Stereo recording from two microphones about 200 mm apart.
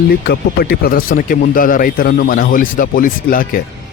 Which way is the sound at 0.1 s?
50° left (ahead or behind).